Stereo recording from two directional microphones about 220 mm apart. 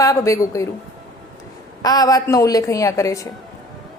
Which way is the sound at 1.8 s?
15° left (ahead or behind).